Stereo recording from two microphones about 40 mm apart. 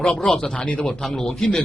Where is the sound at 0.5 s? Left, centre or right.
Left.